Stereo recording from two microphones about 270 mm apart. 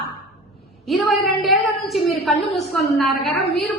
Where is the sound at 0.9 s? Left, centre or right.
Centre.